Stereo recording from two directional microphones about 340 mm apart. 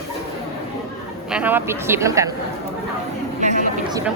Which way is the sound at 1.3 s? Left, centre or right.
Centre.